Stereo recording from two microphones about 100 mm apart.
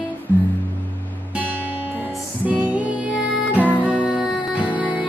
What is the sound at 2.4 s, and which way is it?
Music, 15° right (ahead or behind).